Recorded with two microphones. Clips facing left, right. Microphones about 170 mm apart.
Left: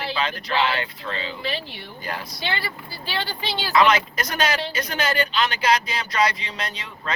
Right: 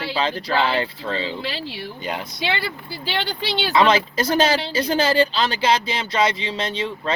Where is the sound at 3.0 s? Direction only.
80° right.